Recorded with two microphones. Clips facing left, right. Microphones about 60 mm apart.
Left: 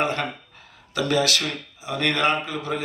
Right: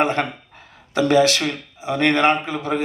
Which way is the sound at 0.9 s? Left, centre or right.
Right.